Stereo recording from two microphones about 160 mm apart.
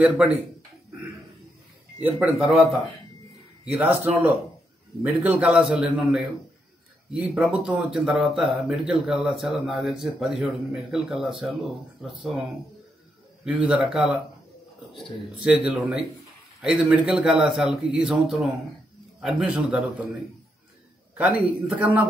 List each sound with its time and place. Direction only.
0.0 s a man's voice: 10° right (ahead or behind)
2.0 s a man's voice: 5° right (ahead or behind)
13.4 s speech: 5° right (ahead or behind)
21.2 s a man's voice: 10° right (ahead or behind)